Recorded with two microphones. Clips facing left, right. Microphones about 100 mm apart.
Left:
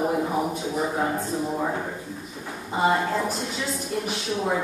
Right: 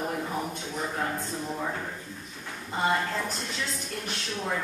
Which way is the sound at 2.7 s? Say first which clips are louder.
Left 5 dB; 5° left (ahead or behind).